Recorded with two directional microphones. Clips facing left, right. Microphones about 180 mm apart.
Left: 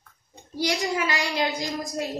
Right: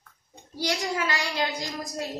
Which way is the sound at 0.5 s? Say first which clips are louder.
Left 3 dB; 15° left (ahead or behind).